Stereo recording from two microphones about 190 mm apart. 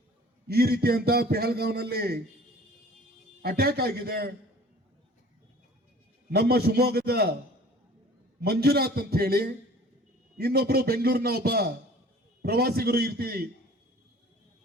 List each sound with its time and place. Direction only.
0.4 s a man's voice: 55° right (ahead or behind)
3.4 s a man's voice: 55° right (ahead or behind)
6.3 s a man's voice: 55° right (ahead or behind)
8.4 s a man's voice: 55° right (ahead or behind)